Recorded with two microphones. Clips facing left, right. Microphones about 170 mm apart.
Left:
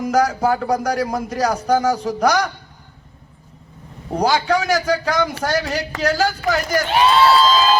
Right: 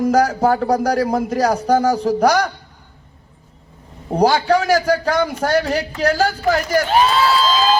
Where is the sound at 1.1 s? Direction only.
10° right (ahead or behind).